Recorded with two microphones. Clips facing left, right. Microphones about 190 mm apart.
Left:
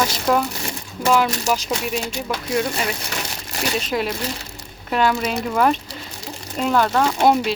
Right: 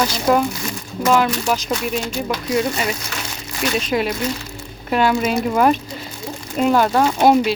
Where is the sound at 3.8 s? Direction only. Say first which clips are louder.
Right 3 dB; centre (ahead or behind).